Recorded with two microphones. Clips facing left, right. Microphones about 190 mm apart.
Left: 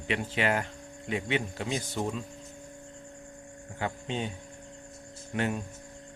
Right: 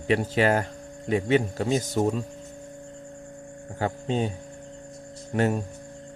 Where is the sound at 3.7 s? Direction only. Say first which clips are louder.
Right 7 dB; 40° right (ahead or behind).